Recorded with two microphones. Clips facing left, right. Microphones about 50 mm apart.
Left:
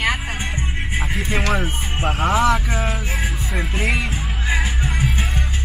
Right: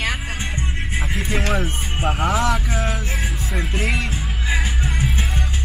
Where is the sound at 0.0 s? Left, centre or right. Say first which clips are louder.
Left 3 dB; left.